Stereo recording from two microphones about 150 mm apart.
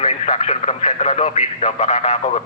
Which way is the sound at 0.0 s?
50° left (ahead or behind).